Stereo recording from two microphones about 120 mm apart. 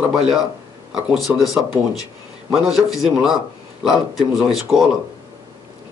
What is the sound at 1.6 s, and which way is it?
Speech, 30° left (ahead or behind).